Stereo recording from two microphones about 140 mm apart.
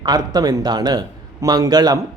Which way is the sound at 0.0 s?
30° right (ahead or behind).